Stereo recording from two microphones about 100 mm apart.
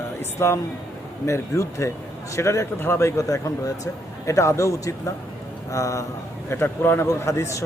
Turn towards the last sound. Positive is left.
turn(degrees=30)  # may be behind; listen again after turning